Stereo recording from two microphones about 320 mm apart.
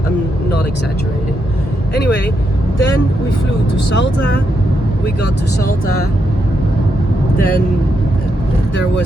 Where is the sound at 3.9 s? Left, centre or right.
Left.